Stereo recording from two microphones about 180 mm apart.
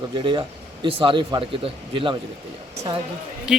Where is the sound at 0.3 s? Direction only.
25° right (ahead or behind).